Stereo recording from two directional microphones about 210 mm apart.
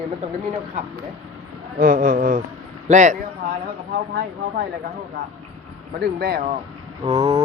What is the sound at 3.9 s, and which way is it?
Speech, 55° right (ahead or behind).